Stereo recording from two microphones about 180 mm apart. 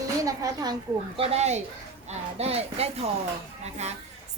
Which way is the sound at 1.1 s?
35° right (ahead or behind).